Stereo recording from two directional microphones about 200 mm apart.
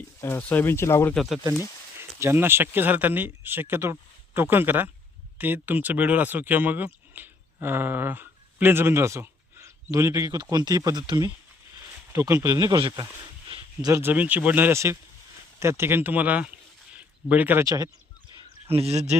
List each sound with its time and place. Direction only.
0.2 s speech: 10° left (ahead or behind)
1.1 s speech: centre (ahead or behind)
2.0 s speech: 10° right (ahead or behind)
18.7 s speech: 30° right (ahead or behind)